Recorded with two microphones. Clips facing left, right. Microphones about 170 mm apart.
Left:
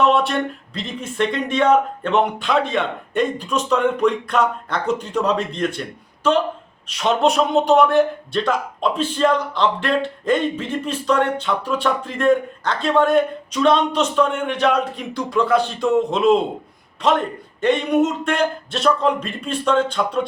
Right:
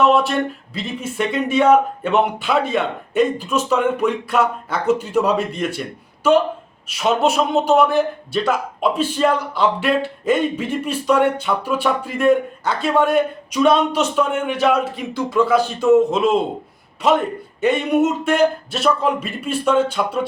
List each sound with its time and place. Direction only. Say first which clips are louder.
0.0 s a man's voice: right 2 dB; centre (ahead or behind)